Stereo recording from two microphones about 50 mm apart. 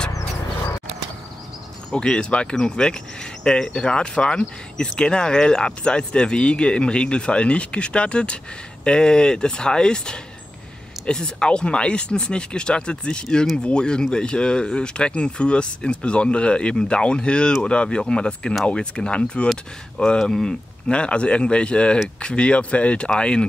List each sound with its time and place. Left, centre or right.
1.9 s speech: centre
20.2 s speech: centre